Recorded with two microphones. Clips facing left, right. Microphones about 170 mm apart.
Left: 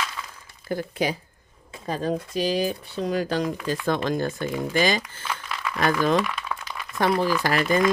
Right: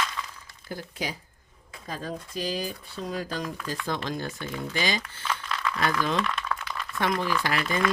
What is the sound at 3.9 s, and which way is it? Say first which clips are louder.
Speech: left 8 dB; 50° left (ahead or behind).